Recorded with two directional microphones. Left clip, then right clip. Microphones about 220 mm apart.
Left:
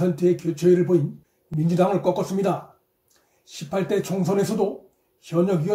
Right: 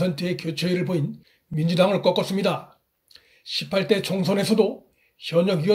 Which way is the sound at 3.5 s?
30° right (ahead or behind).